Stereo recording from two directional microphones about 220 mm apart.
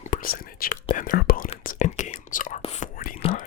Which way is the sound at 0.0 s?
40° left (ahead or behind).